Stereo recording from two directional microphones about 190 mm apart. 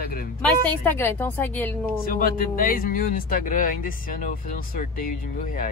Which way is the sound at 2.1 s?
50° left (ahead or behind).